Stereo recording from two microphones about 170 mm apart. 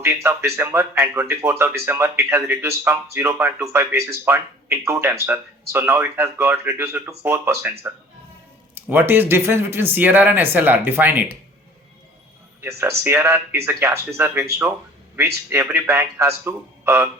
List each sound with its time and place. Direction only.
0.0 s speech: 15° right (ahead or behind)
12.6 s speech: 15° right (ahead or behind)